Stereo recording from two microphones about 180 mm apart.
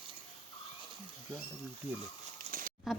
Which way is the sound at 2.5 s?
35° right (ahead or behind).